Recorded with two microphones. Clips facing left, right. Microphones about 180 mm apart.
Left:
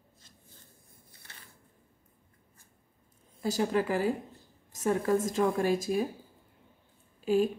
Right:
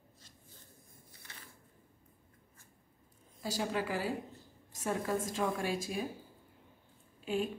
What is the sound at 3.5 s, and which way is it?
A woman's voice, 45° left (ahead or behind).